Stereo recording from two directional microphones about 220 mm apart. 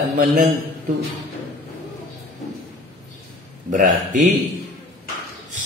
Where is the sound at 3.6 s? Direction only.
35° right (ahead or behind).